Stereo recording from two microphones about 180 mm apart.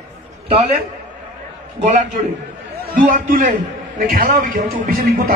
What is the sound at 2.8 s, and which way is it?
A man's voice, 50° right (ahead or behind).